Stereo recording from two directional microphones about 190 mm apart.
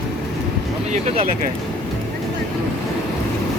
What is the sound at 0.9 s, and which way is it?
Speech, 35° right (ahead or behind).